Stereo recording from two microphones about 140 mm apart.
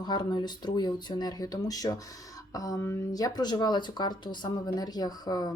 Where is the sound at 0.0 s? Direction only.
30° left (ahead or behind).